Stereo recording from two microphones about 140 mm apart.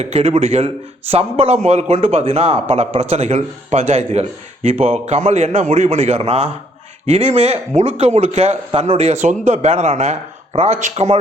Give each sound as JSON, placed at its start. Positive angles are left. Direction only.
{"t": 0.0, "sound": "a man's voice", "side_deg": -50}